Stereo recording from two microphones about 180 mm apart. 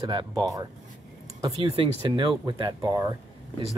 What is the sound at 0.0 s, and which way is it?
Speech, 25° right (ahead or behind).